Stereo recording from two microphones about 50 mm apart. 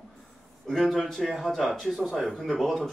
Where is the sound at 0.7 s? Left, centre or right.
Centre.